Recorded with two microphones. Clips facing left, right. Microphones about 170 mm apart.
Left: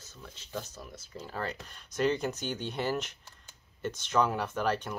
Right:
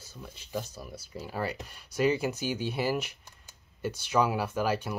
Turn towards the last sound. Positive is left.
turn(degrees=-10)  # may be behind; listen again after turning